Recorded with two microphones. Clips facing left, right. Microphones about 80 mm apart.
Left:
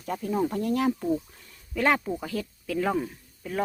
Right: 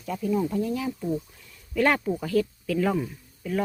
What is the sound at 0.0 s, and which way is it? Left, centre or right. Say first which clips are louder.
Speech: right 1 dB; left.